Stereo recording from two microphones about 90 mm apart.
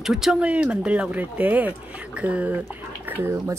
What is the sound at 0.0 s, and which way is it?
A woman's voice, 5° right (ahead or behind).